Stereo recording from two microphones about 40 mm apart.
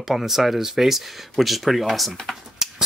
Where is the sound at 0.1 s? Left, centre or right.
Centre.